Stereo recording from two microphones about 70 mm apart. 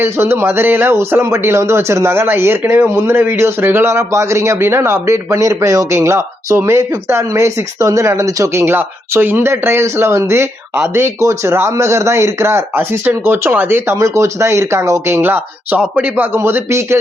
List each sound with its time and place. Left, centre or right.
0.0 s a man's voice: right
8.6 s a man's voice: right
14.0 s a man's voice: right
16.3 s a man's voice: right